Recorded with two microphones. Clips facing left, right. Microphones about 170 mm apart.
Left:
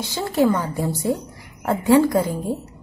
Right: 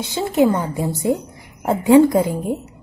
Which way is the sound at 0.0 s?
20° right (ahead or behind).